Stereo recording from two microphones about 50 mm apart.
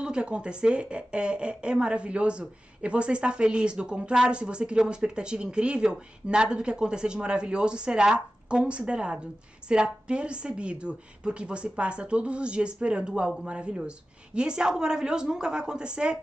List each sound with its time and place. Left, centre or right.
0.0 s a woman's voice: centre